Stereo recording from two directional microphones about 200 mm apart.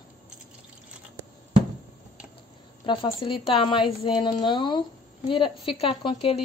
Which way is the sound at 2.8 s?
25° left (ahead or behind).